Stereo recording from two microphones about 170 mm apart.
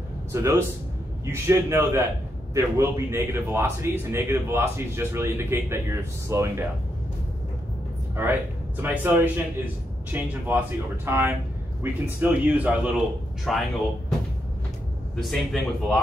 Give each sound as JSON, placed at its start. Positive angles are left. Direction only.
{"t": 0.3, "sound": "a man's voice", "side_deg": -15}
{"t": 8.2, "sound": "a man's voice", "side_deg": -10}
{"t": 15.1, "sound": "speech", "side_deg": 5}